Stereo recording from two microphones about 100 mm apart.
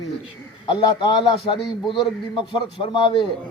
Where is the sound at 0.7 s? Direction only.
50° left (ahead or behind).